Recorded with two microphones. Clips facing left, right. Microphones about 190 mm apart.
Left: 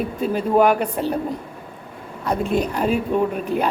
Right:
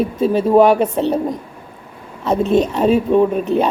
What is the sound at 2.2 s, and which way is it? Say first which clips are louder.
Speech: right 6 dB; 25° right (ahead or behind).